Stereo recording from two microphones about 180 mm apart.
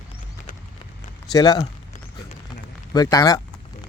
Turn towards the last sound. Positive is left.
turn(degrees=20)  # may be behind; listen again after turning